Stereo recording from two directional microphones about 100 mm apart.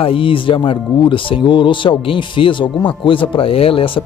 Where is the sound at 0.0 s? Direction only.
60° left (ahead or behind).